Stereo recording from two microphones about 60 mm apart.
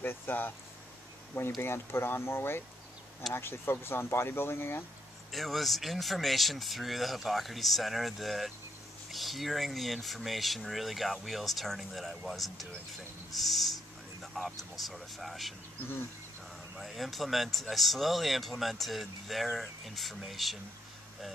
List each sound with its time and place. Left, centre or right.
0.0 s speech: left
5.3 s speech: centre
16.7 s speech: centre